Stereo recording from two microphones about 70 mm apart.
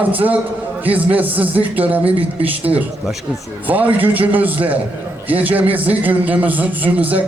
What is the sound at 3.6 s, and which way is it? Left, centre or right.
A man's voice, right.